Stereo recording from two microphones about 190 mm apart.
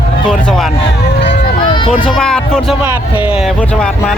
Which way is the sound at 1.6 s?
25° left (ahead or behind).